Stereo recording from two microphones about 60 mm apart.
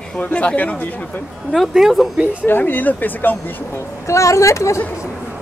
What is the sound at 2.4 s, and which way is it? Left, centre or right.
Speech, left.